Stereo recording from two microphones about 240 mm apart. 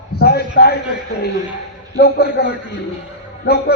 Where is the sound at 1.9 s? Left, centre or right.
Left.